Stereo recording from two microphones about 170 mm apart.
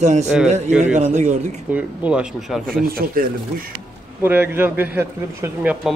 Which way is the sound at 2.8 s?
60° right (ahead or behind).